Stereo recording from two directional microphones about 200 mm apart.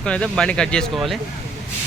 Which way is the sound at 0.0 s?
5° left (ahead or behind).